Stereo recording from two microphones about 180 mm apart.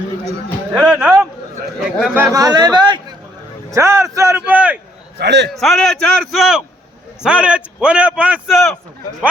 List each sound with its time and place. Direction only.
0.7 s a sound: 5° right (ahead or behind)
1.8 s speech: 5° right (ahead or behind)
2.2 s a man's voice: 20° right (ahead or behind)
5.2 s a man's voice: 70° right (ahead or behind)
5.5 s a man's voice: centre (ahead or behind)